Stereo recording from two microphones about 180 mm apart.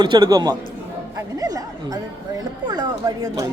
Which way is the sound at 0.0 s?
25° right (ahead or behind).